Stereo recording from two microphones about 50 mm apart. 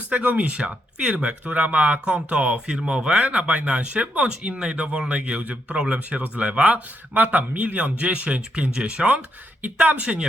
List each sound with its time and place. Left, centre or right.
0.1 s speech: right
2.0 s speech: right
3.2 s speech: right